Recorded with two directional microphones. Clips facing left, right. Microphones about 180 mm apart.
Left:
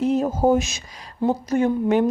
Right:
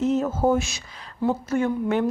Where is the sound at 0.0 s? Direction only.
15° left (ahead or behind).